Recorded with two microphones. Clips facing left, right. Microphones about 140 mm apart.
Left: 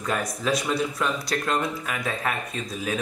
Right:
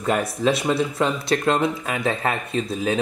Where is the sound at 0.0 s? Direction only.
25° right (ahead or behind).